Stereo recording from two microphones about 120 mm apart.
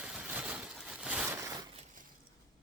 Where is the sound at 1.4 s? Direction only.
25° right (ahead or behind).